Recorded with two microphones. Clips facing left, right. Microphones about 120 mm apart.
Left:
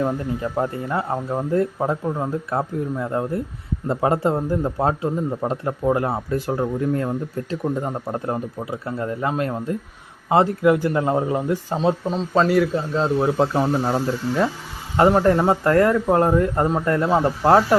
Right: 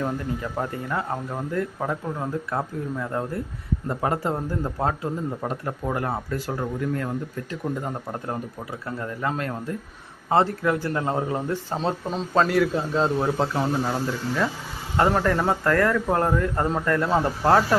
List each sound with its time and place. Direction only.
0.5 s a man's voice: 25° left (ahead or behind); by 13.1 s centre (ahead or behind)
13.1 s speech: 10° left (ahead or behind)
13.5 s a man's voice: 25° left (ahead or behind)
14.9 s a man's voice: 20° left (ahead or behind)